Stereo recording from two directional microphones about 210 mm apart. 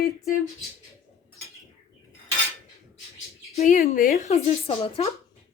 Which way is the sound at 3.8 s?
45° left (ahead or behind).